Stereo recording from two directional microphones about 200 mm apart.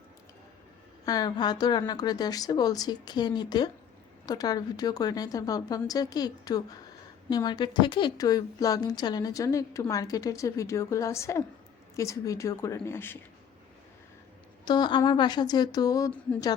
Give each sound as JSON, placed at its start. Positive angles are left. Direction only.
{"t": 1.0, "sound": "a woman's voice", "side_deg": 20}
{"t": 14.6, "sound": "a woman's voice", "side_deg": 20}